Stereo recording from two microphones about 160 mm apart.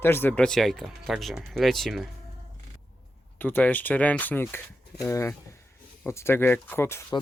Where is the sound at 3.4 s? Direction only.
10° left (ahead or behind).